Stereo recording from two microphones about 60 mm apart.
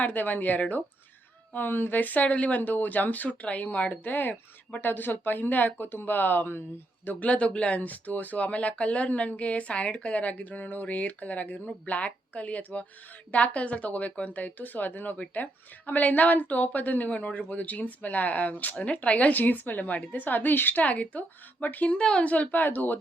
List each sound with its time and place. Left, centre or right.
0.0 s speech: left
7.3 s speech: left
21.9 s speech: centre; by 23.0 s left